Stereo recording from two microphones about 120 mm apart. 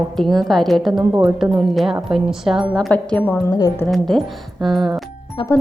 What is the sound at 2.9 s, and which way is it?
Speech, 10° left (ahead or behind).